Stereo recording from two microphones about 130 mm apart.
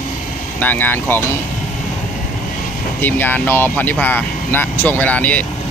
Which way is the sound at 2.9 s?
15° left (ahead or behind).